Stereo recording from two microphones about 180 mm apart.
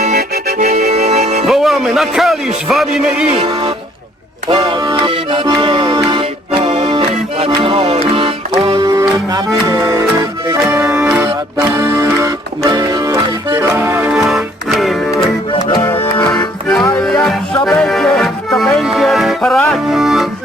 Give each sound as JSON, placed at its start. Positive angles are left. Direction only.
{"t": 0.0, "sound": "music", "side_deg": -50}
{"t": 1.5, "sound": "music", "side_deg": 0}
{"t": 3.3, "sound": "music", "side_deg": -30}
{"t": 10.7, "sound": "accordion", "side_deg": -10}
{"t": 11.8, "sound": "music", "side_deg": -15}
{"t": 15.7, "sound": "music", "side_deg": 25}
{"t": 17.2, "sound": "music", "side_deg": 5}